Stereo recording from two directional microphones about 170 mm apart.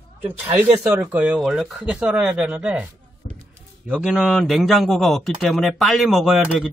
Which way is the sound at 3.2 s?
50° left (ahead or behind).